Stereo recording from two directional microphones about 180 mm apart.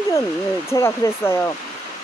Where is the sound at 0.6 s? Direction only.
15° left (ahead or behind).